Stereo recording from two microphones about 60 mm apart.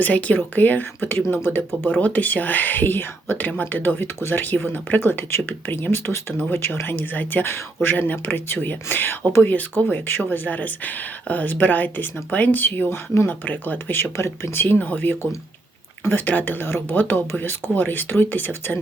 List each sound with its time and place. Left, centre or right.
0.0 s speech: left
2.0 s speech: left
14.0 s speech: left
14.8 s speech: left